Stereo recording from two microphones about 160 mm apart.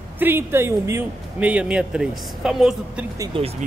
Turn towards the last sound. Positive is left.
turn(degrees=-35)  # may be behind; listen again after turning